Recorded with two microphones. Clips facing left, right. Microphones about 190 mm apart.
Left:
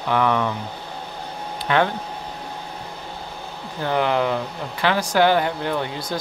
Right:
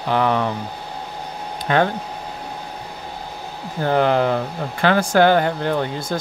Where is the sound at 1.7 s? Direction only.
40° right (ahead or behind).